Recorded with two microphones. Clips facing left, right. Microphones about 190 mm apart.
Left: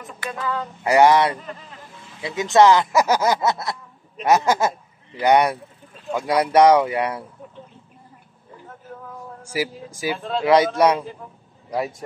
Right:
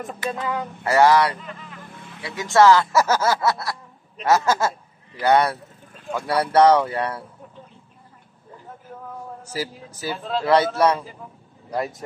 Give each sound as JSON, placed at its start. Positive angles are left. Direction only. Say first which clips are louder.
{"t": 0.2, "sound": "speech", "louder": "even", "side_deg": -20}
{"t": 0.8, "sound": "speech", "louder": "left 1 dB", "side_deg": 20}
{"t": 9.5, "sound": "speech", "louder": "left 4 dB", "side_deg": 15}